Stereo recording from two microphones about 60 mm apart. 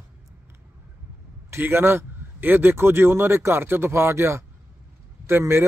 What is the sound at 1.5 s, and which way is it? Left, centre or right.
Speech, right.